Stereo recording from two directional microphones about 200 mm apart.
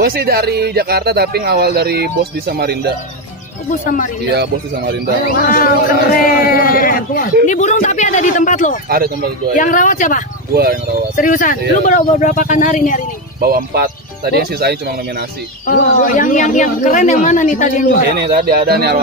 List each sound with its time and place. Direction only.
0.0 s speech: 50° right (ahead or behind)
4.3 s speech: 55° right (ahead or behind)
5.2 s a woman's voice: 45° left (ahead or behind)
8.8 s speech: 50° right (ahead or behind)
9.6 s a woman's voice: 40° left (ahead or behind)
10.5 s speech: 50° right (ahead or behind)
11.1 s a woman's voice: 40° left (ahead or behind)
13.4 s speech: 50° right (ahead or behind)
15.6 s a woman's voice: 40° left (ahead or behind)
18.1 s speech: 50° right (ahead or behind)